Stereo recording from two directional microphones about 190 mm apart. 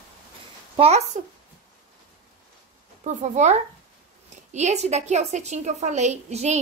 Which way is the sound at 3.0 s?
40° right (ahead or behind).